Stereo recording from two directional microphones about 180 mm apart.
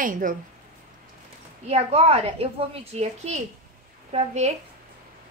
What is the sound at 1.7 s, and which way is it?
A woman's voice, 35° right (ahead or behind).